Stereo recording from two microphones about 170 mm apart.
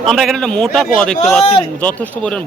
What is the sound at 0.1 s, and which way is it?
A man's voice, centre (ahead or behind).